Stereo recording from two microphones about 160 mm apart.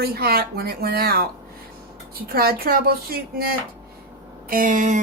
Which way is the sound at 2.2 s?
70° right (ahead or behind).